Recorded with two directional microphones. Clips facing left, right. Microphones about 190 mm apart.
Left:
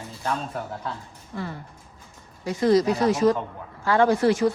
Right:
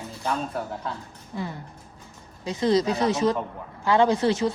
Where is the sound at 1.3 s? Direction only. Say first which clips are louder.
Even; 15° right (ahead or behind).